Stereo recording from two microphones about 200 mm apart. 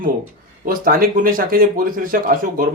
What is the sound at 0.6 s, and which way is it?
Speech, 45° right (ahead or behind).